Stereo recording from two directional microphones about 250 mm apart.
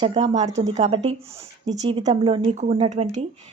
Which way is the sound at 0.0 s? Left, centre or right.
Right.